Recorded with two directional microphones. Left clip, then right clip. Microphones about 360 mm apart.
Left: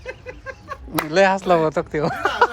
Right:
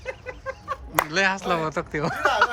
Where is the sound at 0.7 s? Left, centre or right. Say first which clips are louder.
Even; centre.